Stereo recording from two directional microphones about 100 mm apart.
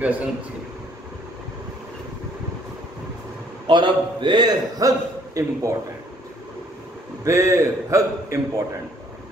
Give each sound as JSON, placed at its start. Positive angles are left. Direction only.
{"t": 0.0, "sound": "speech", "side_deg": -15}
{"t": 3.6, "sound": "a man's voice", "side_deg": -50}
{"t": 7.2, "sound": "a man's voice", "side_deg": -30}